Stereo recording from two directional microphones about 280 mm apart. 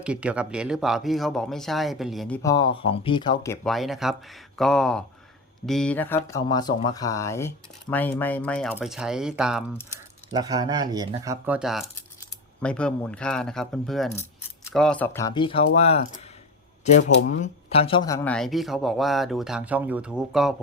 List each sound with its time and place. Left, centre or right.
0.0 s speech: centre
10.3 s speech: centre